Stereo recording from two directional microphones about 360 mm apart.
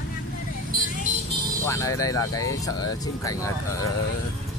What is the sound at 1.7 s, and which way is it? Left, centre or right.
Speech, centre.